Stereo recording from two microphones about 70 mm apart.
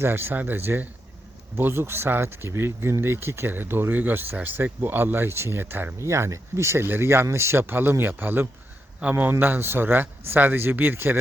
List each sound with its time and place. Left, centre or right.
0.0 s speech: right
6.0 s speech: right
7.6 s speech: right